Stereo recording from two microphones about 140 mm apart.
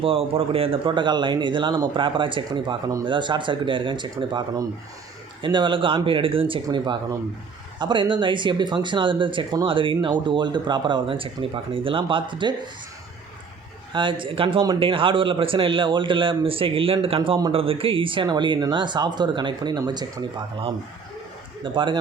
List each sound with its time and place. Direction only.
0.0 s speech: 40° right (ahead or behind)
13.9 s speech: 35° right (ahead or behind)